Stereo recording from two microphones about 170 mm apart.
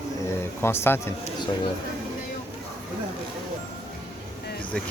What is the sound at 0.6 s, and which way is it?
Speech, 15° left (ahead or behind).